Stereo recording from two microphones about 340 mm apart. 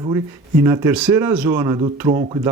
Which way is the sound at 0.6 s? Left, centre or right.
Centre.